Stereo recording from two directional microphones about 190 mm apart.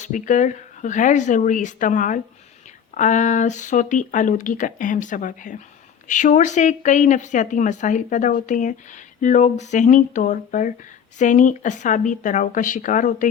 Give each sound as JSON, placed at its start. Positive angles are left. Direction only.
{"t": 0.0, "sound": "speech", "side_deg": 40}